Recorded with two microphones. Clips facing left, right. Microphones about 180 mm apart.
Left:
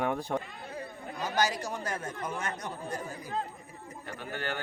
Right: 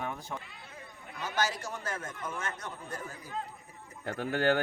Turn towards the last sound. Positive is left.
turn(degrees=-70)  # may be behind; listen again after turning